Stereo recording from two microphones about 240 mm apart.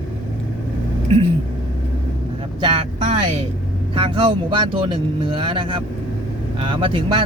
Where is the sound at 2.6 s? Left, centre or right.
Right.